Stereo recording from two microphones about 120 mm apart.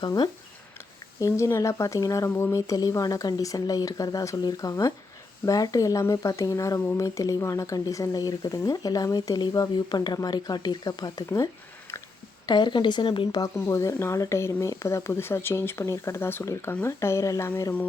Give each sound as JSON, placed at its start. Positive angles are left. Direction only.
{"t": 1.2, "sound": "speech", "side_deg": 25}
{"t": 12.5, "sound": "speech", "side_deg": 40}
{"t": 13.4, "sound": "speech", "side_deg": 25}